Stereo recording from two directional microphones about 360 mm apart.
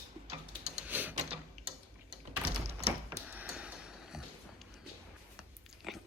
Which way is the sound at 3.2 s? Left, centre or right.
Centre.